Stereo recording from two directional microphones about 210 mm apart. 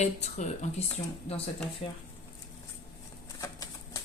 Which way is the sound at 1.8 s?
25° left (ahead or behind).